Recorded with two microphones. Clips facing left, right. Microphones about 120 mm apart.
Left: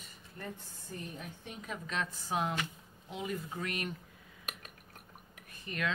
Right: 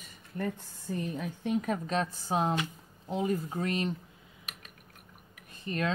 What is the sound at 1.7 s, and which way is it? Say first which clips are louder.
Mantra: right 8 dB; 35° right (ahead or behind).